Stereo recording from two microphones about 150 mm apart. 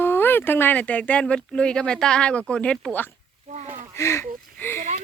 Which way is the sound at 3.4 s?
50° right (ahead or behind).